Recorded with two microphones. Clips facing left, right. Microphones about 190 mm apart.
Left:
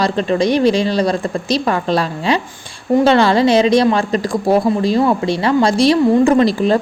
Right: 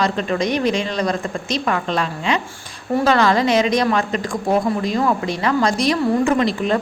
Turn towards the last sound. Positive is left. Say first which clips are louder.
# left 5 dB
turn(degrees=35)  # may be behind; listen again after turning